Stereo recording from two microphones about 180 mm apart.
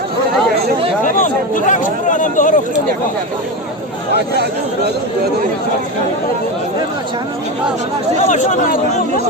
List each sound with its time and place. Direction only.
1.0 s speech: 45° left (ahead or behind)
8.3 s speech: 50° left (ahead or behind)